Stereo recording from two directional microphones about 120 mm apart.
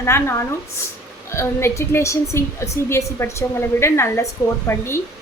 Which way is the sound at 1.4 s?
20° left (ahead or behind).